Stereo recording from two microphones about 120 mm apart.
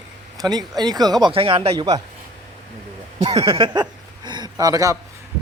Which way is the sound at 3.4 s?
45° right (ahead or behind).